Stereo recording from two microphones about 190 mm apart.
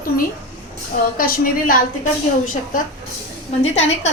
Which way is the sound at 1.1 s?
50° left (ahead or behind).